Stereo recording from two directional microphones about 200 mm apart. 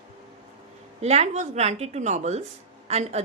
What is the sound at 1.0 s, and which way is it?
Speech, 30° right (ahead or behind).